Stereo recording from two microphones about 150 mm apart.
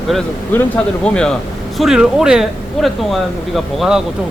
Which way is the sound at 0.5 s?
15° left (ahead or behind).